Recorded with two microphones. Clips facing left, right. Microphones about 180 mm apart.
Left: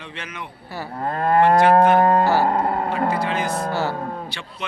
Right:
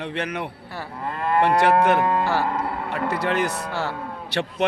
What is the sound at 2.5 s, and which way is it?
Music, 45° left (ahead or behind).